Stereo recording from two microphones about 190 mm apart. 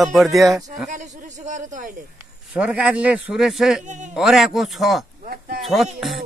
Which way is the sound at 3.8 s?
40° right (ahead or behind).